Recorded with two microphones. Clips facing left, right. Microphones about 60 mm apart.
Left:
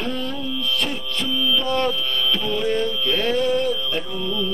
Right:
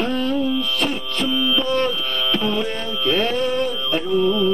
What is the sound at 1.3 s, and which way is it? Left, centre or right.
Music, right.